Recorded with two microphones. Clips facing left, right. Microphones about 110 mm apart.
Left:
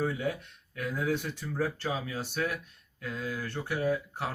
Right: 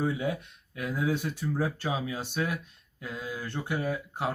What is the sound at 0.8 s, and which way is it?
Speech, 15° right (ahead or behind).